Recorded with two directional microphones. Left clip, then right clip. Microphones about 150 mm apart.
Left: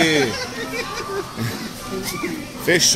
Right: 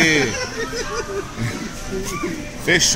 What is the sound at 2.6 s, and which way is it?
Speech, 20° left (ahead or behind).